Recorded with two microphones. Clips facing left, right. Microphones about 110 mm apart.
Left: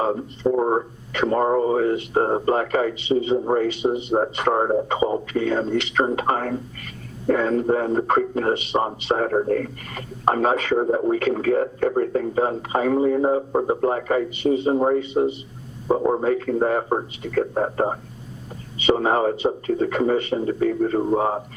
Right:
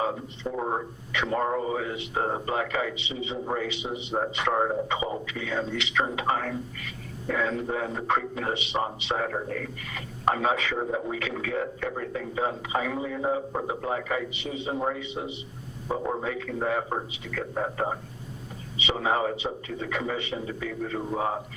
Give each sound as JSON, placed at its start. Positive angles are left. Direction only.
{"t": 0.0, "sound": "a man's voice", "side_deg": 40}